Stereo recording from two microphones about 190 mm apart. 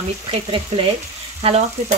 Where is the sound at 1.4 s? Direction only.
30° right (ahead or behind).